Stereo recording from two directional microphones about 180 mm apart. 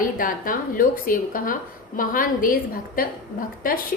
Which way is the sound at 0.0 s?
50° left (ahead or behind).